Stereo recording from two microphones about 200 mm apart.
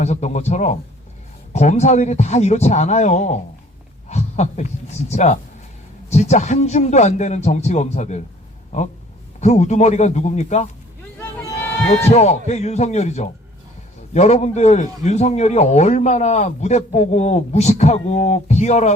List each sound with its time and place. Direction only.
0.0 s a man's voice: 35° left (ahead or behind)
12.0 s a man's voice: 35° left (ahead or behind)